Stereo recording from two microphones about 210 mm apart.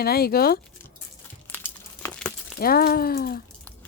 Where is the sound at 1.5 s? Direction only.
10° left (ahead or behind).